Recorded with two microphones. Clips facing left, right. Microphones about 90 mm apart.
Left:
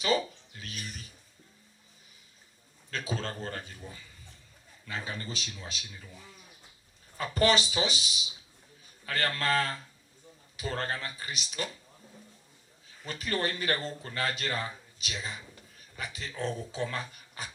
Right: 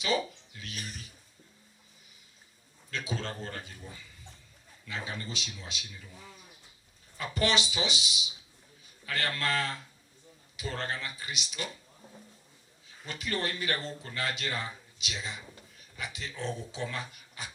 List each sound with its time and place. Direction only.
0.5 s a sound: 40° left (ahead or behind)
2.9 s speech: 40° left (ahead or behind)
5.0 s speech: 40° left (ahead or behind)
7.2 s speech: 40° left (ahead or behind)
13.1 s speech: 40° left (ahead or behind)